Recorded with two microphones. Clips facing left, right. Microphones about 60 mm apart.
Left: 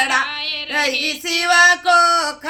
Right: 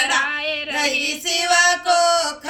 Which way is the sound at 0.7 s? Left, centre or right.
Left.